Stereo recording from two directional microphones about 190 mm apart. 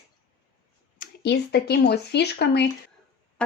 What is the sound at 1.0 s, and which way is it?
Speech, 60° left (ahead or behind).